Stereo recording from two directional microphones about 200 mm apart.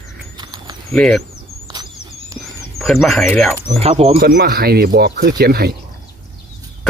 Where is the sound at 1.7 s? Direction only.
20° right (ahead or behind).